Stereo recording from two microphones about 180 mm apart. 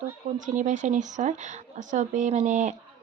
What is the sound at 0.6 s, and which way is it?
A woman's voice, 45° right (ahead or behind).